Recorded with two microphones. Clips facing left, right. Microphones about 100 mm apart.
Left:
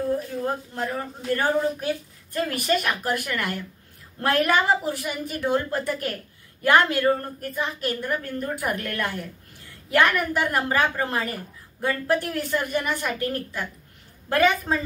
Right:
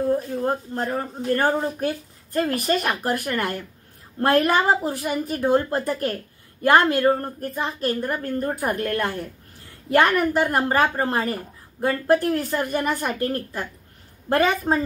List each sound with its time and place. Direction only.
0.1 s a woman's voice: 35° right (ahead or behind)